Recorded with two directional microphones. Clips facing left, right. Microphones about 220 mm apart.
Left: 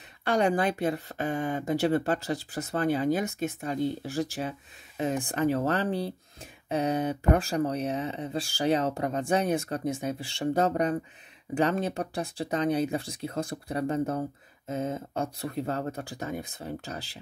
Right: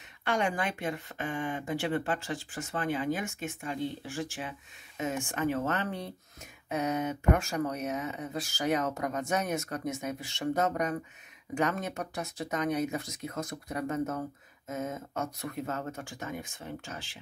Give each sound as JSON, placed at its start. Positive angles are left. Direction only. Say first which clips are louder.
{"t": 0.2, "sound": "speech", "louder": "left 6 dB", "side_deg": 35}